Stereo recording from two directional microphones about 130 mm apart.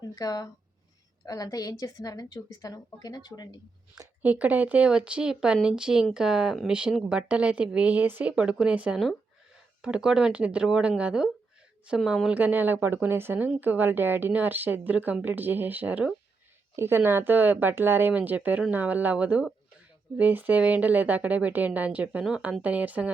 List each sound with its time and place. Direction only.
0.2 s a woman's voice: 30° left (ahead or behind)
4.2 s speech: 10° right (ahead or behind)